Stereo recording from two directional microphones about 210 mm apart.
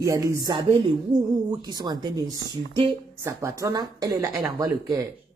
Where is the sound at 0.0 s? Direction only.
15° right (ahead or behind).